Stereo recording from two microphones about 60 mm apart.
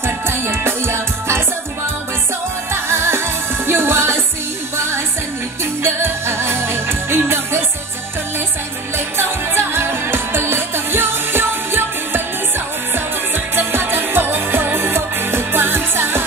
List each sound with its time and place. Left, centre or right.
0.0 s music: right
2.7 s music: right
5.8 s music: right
8.9 s music: right
13.6 s music: right